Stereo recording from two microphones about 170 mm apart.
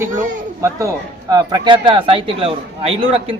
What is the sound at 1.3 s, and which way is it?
A man's voice, 25° right (ahead or behind).